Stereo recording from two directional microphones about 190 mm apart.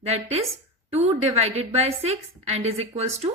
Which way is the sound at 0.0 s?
35° right (ahead or behind).